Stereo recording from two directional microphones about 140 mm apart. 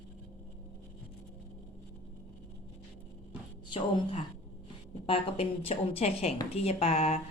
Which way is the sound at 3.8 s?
45° left (ahead or behind).